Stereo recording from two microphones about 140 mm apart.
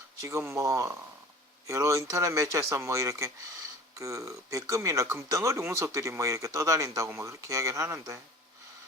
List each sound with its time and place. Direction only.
0.2 s speech: 20° right (ahead or behind)